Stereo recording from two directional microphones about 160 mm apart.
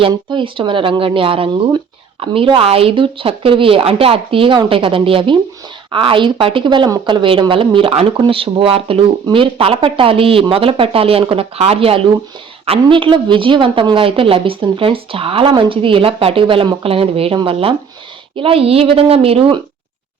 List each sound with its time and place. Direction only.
0.0 s a woman's voice: 30° right (ahead or behind)